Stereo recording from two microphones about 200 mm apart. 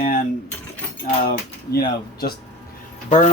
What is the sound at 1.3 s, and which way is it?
Speech, 50° left (ahead or behind).